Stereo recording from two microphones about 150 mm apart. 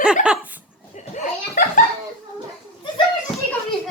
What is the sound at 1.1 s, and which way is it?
Chuckle, 55° left (ahead or behind).